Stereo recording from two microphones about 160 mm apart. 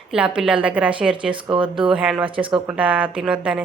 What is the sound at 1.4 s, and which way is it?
Speech, 30° right (ahead or behind).